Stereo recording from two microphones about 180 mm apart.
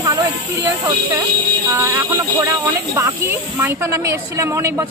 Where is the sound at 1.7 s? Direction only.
10° right (ahead or behind).